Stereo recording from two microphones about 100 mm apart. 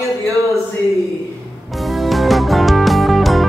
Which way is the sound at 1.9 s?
Centre (ahead or behind).